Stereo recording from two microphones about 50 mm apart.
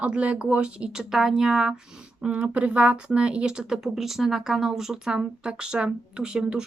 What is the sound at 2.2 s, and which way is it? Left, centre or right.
Speech, right.